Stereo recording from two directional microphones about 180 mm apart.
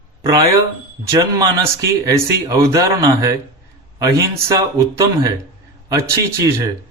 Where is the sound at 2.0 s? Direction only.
20° right (ahead or behind).